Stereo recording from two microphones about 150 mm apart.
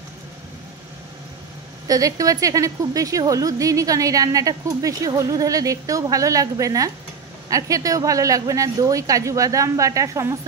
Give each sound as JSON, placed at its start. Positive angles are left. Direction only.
{"t": 1.9, "sound": "a woman's voice", "side_deg": -25}